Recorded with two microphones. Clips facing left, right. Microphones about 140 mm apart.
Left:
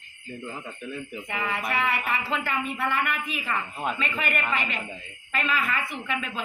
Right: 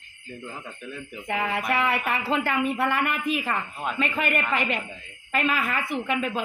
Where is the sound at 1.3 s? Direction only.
45° right (ahead or behind).